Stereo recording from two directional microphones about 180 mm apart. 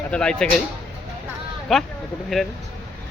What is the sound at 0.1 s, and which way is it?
Speech, 5° left (ahead or behind).